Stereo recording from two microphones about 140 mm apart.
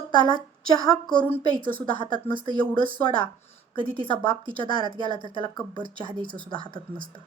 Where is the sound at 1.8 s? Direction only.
35° right (ahead or behind).